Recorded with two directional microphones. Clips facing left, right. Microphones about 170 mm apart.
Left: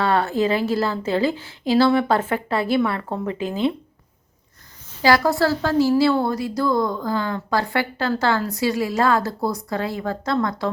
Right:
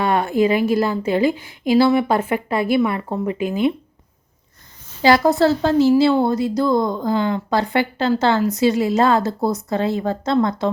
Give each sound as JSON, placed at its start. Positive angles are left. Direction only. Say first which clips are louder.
{"t": 0.0, "sound": "a woman's voice", "louder": "right 2 dB", "side_deg": -15}
{"t": 5.0, "sound": "speech", "louder": "right 3 dB", "side_deg": -20}